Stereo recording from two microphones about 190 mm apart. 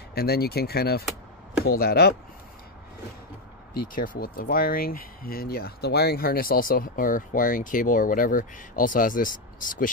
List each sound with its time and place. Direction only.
0.1 s speech: 55° left (ahead or behind)
3.9 s speech: 45° left (ahead or behind)